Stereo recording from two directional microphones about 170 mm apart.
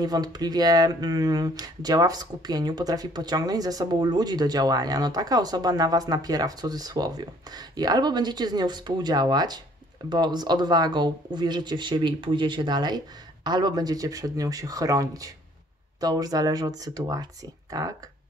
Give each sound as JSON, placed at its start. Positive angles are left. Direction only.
{"t": 0.0, "sound": "speech", "side_deg": -25}